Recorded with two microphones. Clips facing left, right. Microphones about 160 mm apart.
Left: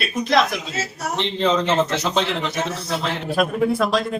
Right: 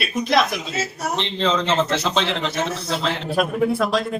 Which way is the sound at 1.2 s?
15° left (ahead or behind).